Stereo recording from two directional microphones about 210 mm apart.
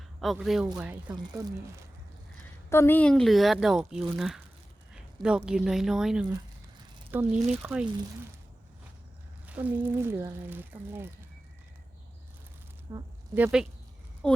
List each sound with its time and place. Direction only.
0.2 s speech: centre (ahead or behind)
1.1 s speech: 20° right (ahead or behind)
2.6 s speech: 10° left (ahead or behind); by 7.9 s 5° right (ahead or behind)
9.5 s speech: 5° right (ahead or behind)
12.9 s a woman's voice: 10° right (ahead or behind)